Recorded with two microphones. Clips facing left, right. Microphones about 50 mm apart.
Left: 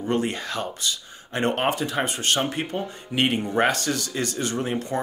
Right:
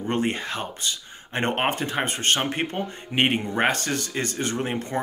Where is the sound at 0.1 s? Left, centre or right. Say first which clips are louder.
Even; right.